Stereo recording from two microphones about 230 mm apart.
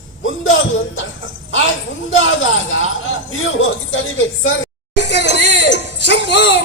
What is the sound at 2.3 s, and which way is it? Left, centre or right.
Speech, left.